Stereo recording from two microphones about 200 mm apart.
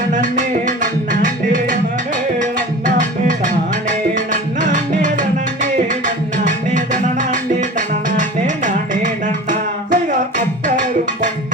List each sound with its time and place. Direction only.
0.1 s music: 40° right (ahead or behind)
6.4 s music: 40° right (ahead or behind)